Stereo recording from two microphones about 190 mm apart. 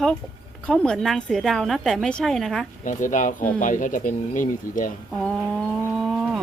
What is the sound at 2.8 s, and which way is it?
Speech, 40° left (ahead or behind).